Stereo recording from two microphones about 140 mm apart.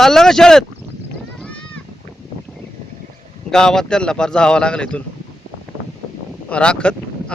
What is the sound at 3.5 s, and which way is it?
A man's voice, 5° left (ahead or behind).